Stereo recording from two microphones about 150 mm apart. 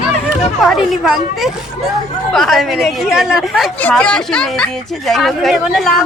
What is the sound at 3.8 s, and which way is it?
A woman's voice, 10° left (ahead or behind).